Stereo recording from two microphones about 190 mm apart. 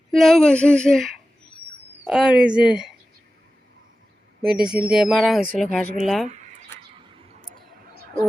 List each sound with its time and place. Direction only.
0.1 s speech: centre (ahead or behind)
4.5 s speech: 5° right (ahead or behind)
7.9 s a sound: 50° right (ahead or behind)